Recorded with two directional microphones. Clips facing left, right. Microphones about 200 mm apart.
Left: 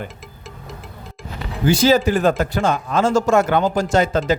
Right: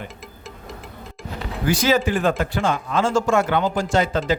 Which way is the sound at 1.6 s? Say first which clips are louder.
Left 4 dB; 30° left (ahead or behind).